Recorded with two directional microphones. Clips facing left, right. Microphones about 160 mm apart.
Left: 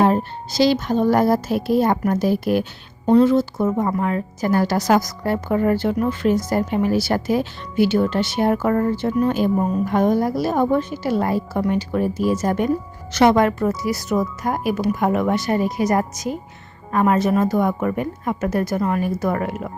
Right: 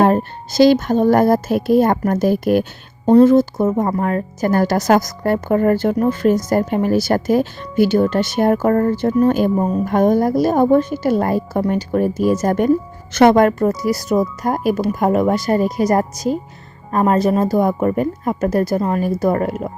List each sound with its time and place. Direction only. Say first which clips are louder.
0.0 s a woman's voice: right 3 dB; 50° right (ahead or behind)